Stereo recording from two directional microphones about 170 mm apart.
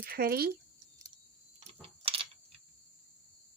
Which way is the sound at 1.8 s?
35° right (ahead or behind).